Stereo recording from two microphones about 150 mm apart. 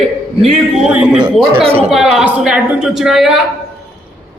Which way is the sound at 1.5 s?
40° right (ahead or behind).